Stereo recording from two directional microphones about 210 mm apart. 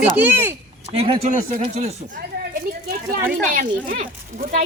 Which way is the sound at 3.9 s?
40° right (ahead or behind).